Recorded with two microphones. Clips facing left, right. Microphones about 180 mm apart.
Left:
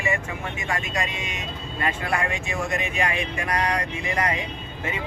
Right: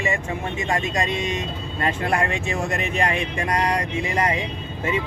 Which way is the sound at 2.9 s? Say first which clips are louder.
Right 3 dB; 35° right (ahead or behind).